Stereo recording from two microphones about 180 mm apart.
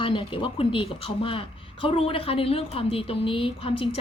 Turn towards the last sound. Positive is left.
turn(degrees=30)  # may be behind; listen again after turning